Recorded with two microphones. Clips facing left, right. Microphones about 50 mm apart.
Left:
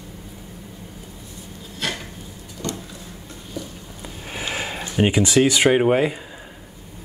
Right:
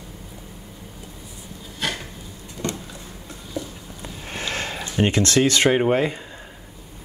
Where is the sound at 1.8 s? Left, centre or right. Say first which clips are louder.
Even; centre.